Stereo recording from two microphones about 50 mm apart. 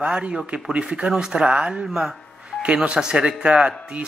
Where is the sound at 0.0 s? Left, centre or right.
Right.